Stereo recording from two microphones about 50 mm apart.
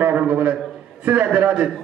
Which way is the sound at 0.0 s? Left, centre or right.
Right.